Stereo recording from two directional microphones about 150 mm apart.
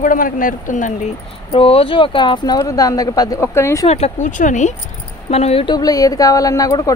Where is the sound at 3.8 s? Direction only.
45° left (ahead or behind).